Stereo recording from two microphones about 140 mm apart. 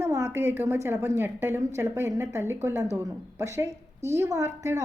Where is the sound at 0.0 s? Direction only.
20° right (ahead or behind).